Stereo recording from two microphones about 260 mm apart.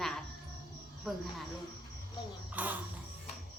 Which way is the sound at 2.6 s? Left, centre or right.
Centre.